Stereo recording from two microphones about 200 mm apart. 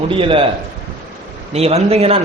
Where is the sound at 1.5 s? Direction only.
30° right (ahead or behind).